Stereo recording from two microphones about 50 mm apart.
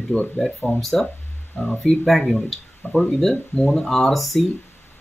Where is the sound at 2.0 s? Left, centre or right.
Centre.